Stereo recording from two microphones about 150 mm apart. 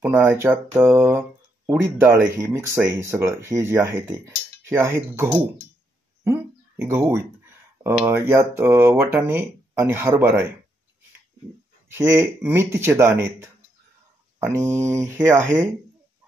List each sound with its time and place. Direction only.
0.0 s speech: 10° right (ahead or behind)
11.9 s speech: 15° right (ahead or behind)